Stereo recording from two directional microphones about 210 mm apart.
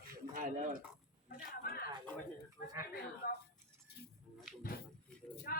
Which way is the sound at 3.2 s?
45° left (ahead or behind).